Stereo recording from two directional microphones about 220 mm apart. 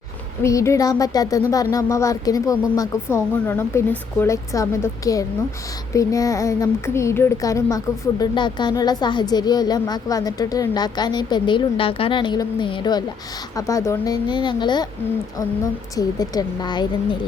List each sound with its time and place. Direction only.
0.4 s a woman's voice: 15° left (ahead or behind)